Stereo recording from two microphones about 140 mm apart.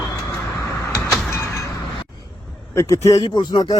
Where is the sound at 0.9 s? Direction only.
20° left (ahead or behind).